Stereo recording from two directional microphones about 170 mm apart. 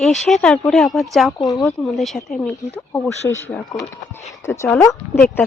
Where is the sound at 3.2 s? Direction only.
15° left (ahead or behind).